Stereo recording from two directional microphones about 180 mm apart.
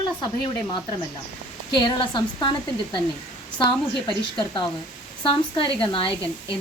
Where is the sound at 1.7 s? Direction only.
25° left (ahead or behind).